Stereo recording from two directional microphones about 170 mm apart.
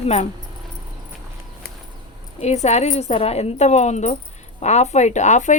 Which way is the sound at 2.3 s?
40° left (ahead or behind).